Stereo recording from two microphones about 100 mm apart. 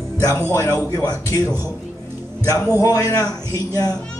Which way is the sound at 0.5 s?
30° left (ahead or behind).